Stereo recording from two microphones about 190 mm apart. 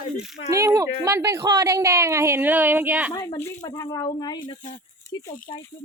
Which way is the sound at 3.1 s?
15° left (ahead or behind).